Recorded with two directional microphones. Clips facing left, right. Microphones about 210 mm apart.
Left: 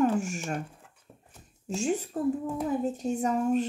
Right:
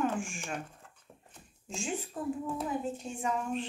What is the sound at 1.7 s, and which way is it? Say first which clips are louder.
A woman's voice: left 7 dB; 40° left (ahead or behind).